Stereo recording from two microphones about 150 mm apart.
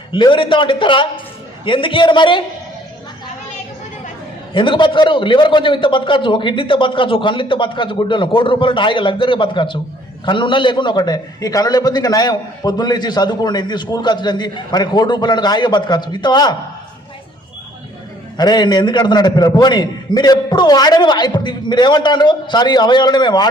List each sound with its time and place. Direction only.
0.1 s a man's voice: 35° left (ahead or behind)
4.5 s a man's voice: 35° left (ahead or behind)
18.3 s a man's voice: 30° left (ahead or behind)